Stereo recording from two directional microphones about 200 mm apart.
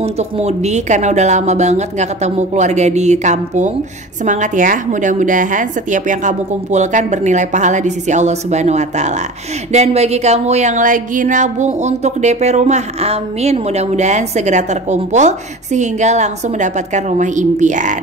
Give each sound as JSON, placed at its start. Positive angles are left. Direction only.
{"t": 0.0, "sound": "speech", "side_deg": -30}